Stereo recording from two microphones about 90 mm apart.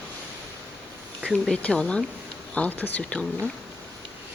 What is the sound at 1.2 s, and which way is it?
Speech, 10° left (ahead or behind).